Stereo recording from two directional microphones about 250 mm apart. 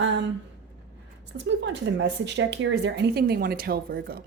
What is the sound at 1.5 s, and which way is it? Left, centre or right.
Speech, right.